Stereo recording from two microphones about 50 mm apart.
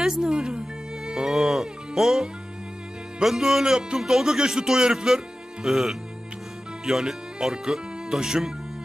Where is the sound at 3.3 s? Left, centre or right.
Centre.